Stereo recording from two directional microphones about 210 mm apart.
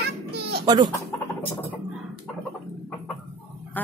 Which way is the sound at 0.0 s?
50° right (ahead or behind).